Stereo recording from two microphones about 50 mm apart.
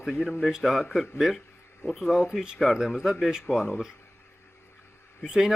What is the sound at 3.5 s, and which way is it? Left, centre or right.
Speech, left.